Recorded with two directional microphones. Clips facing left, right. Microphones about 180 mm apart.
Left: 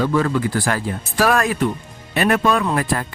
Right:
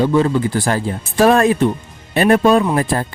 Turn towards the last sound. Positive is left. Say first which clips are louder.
# right 4 dB
turn(degrees=-30)  # may be behind; listen again after turning